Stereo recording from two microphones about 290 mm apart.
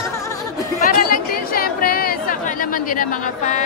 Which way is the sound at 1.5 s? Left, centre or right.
Left.